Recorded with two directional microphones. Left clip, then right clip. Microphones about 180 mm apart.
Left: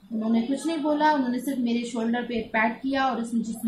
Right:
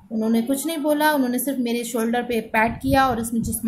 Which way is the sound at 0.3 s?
55° right (ahead or behind).